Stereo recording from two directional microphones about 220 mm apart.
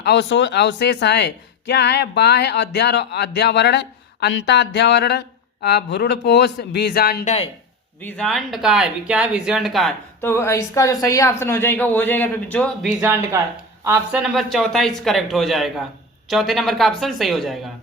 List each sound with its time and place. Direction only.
0.0 s speech: 50° left (ahead or behind)
8.0 s speech: 5° left (ahead or behind)
13.0 s speech: 10° right (ahead or behind)